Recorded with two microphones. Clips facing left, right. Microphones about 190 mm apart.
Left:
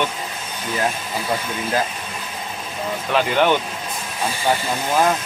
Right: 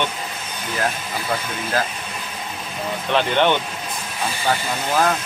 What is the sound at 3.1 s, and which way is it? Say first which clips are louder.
Speech: left 1 dB; 5° left (ahead or behind).